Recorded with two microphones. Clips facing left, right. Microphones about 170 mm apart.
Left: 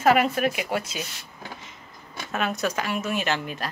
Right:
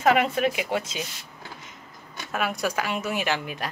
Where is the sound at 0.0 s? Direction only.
20° right (ahead or behind).